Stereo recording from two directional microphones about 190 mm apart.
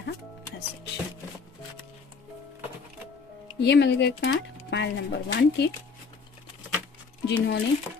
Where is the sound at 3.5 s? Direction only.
65° left (ahead or behind).